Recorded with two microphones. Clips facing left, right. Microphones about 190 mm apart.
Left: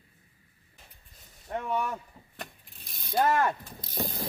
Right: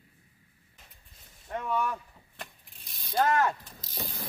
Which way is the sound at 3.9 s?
45° left (ahead or behind).